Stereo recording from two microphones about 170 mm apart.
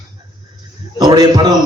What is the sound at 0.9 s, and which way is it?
Speech, 25° right (ahead or behind).